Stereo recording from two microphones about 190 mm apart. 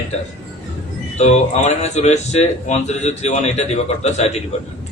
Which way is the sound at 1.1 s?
35° left (ahead or behind).